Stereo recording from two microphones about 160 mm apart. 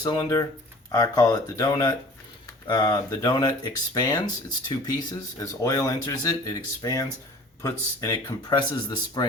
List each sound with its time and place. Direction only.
0.0 s speech: 25° left (ahead or behind)